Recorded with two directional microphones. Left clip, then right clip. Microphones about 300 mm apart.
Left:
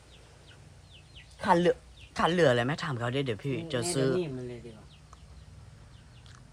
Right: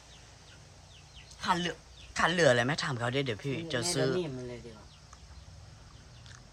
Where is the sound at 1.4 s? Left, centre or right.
Centre.